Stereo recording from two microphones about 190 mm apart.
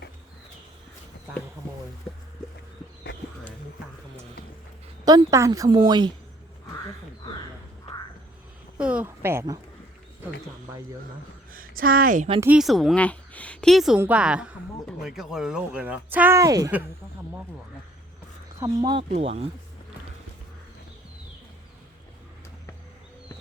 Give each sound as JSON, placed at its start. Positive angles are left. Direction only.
{"t": 5.0, "sound": "a woman's voice", "side_deg": -20}
{"t": 8.8, "sound": "speech", "side_deg": -5}
{"t": 11.5, "sound": "speech", "side_deg": -50}
{"t": 12.4, "sound": "a woman's voice", "side_deg": -5}
{"t": 18.6, "sound": "a woman's voice", "side_deg": -20}